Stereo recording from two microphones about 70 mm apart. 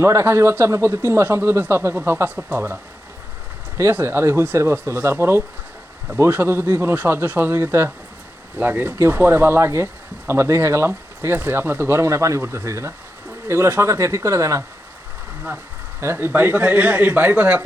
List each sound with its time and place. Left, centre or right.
0.0 s speech: right
4.0 s speech: right
16.0 s a man's voice: right